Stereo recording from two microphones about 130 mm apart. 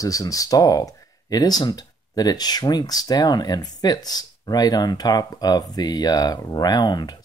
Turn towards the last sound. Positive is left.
turn(degrees=35)  # may be behind; listen again after turning